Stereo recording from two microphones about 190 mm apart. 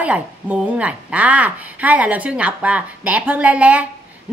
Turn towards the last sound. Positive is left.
turn(degrees=-5)  # may be behind; listen again after turning